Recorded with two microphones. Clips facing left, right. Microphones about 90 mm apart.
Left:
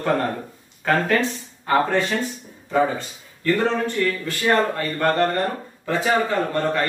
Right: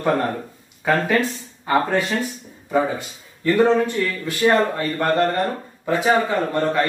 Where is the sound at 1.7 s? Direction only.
5° right (ahead or behind).